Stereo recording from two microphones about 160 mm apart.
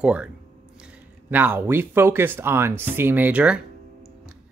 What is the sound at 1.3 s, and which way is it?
Speech, 10° right (ahead or behind).